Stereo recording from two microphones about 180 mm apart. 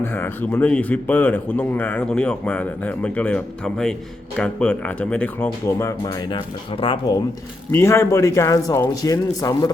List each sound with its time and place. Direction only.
0.0 s a man's voice: 10° left (ahead or behind); by 7.2 s 30° left (ahead or behind)
7.7 s a man's voice: 15° left (ahead or behind)